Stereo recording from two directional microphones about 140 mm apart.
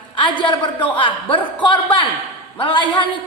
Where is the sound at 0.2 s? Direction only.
35° left (ahead or behind).